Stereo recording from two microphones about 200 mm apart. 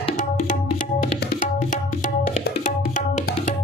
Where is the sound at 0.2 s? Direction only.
40° left (ahead or behind).